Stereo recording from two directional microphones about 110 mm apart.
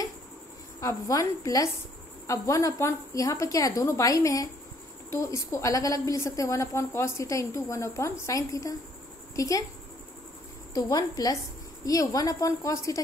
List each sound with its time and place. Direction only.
0.7 s a woman's voice: 30° left (ahead or behind)
10.7 s a woman's voice: 35° left (ahead or behind)